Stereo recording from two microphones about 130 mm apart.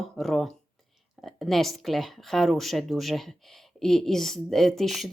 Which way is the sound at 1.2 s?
Centre (ahead or behind).